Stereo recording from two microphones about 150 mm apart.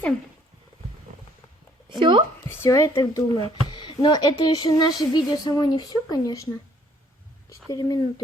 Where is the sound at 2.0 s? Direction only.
35° right (ahead or behind).